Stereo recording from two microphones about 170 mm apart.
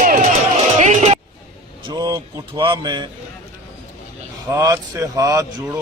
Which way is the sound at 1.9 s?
20° right (ahead or behind).